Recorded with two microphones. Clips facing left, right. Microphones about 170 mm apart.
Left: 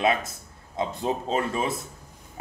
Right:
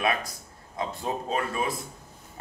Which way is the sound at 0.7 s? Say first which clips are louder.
Left 3 dB; 25° left (ahead or behind).